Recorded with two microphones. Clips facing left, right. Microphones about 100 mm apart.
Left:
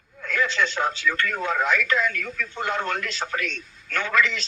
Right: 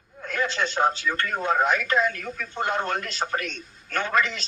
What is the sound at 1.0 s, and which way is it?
Speech, 30° right (ahead or behind).